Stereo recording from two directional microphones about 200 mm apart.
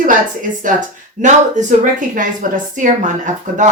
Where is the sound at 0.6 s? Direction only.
40° right (ahead or behind).